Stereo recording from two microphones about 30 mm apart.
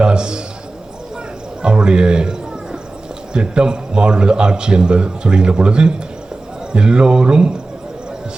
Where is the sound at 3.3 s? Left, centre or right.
Right.